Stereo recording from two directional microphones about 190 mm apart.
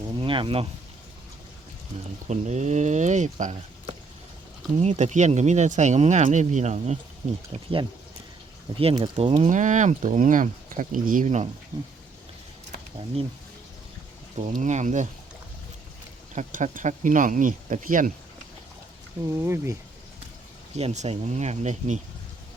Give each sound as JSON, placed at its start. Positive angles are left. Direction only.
{"t": 0.2, "sound": "a sound", "side_deg": -25}
{"t": 2.3, "sound": "speech", "side_deg": -35}
{"t": 4.8, "sound": "speech", "side_deg": -35}
{"t": 8.7, "sound": "speech", "side_deg": -30}
{"t": 14.3, "sound": "speech", "side_deg": -40}
{"t": 16.3, "sound": "speech", "side_deg": -40}
{"t": 19.3, "sound": "speech", "side_deg": -15}
{"t": 20.7, "sound": "speech", "side_deg": -35}